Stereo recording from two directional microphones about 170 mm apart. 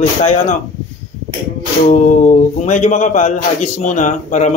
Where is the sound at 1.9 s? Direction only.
45° left (ahead or behind).